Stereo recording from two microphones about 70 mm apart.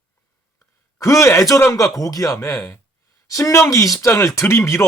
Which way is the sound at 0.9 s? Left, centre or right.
Left.